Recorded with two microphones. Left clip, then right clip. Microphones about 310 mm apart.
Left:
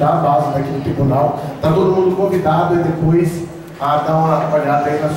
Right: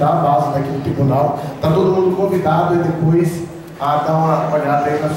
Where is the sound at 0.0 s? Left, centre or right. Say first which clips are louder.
Even; right.